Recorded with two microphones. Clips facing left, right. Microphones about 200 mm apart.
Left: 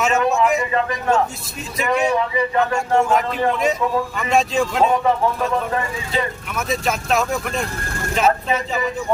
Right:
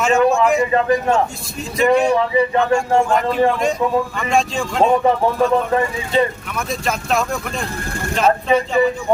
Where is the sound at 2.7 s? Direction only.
5° left (ahead or behind).